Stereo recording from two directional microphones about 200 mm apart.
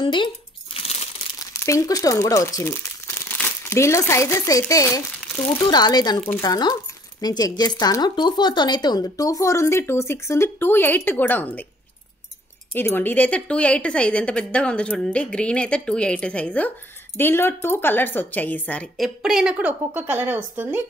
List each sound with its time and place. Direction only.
0.0 s speech: 25° left (ahead or behind)
0.7 s crumpling: 30° left (ahead or behind)
1.5 s speech: 15° left (ahead or behind)
12.7 s a woman's voice: 10° left (ahead or behind); by 20.8 s 10° right (ahead or behind)